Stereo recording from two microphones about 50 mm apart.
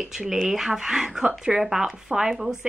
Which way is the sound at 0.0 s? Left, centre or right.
Centre.